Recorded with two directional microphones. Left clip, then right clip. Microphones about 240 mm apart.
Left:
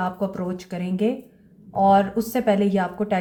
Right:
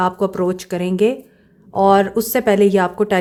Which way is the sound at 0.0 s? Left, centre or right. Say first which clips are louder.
Right 9 dB; right.